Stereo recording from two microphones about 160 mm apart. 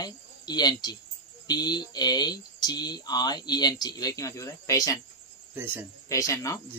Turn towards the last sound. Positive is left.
turn(degrees=20)  # may be behind; listen again after turning